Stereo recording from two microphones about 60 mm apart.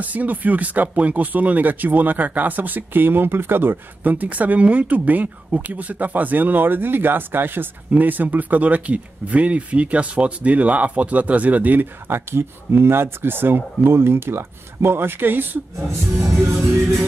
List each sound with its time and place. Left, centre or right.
0.0 s speech: right
16.5 s music: centre